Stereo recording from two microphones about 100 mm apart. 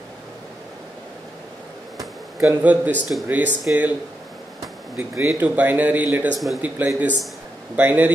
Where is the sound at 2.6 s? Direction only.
15° right (ahead or behind).